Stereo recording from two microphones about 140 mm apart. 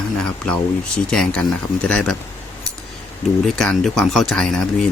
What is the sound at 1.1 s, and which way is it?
Speech, 5° left (ahead or behind).